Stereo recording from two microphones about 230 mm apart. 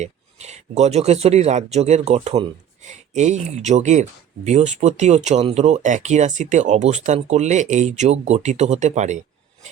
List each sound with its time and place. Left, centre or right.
0.0 s speech: right